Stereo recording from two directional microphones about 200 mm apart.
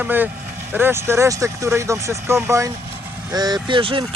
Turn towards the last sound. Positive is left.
turn(degrees=-25)  # may be behind; listen again after turning